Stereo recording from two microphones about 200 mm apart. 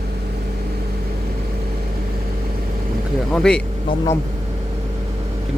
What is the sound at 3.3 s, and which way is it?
Speech, 5° left (ahead or behind).